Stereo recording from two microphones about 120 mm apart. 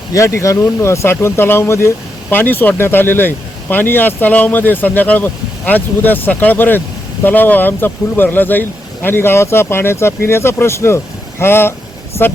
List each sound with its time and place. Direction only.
0.1 s speech: 25° left (ahead or behind)